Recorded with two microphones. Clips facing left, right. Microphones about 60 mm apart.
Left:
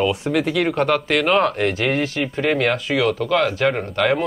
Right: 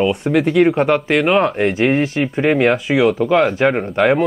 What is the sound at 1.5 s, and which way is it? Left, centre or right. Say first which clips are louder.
Speech: right 5 dB; right.